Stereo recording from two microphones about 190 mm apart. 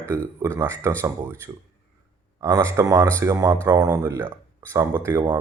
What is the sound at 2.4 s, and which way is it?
Speech, 15° right (ahead or behind).